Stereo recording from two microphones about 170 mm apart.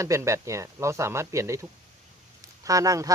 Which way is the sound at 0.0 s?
15° right (ahead or behind).